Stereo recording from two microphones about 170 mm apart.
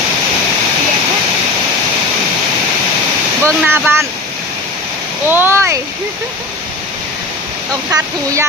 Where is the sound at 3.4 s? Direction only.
15° right (ahead or behind).